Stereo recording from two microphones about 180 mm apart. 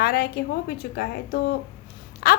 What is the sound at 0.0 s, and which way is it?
A woman's voice, 60° left (ahead or behind).